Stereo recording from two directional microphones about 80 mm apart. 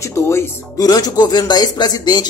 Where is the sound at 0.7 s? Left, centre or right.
Left.